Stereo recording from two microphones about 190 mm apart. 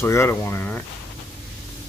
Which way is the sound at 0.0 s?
15° left (ahead or behind).